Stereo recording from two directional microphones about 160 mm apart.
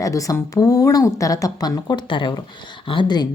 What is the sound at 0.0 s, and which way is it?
Speech, 20° left (ahead or behind).